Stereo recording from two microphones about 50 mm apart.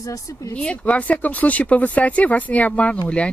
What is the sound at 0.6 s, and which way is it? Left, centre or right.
Speech, left.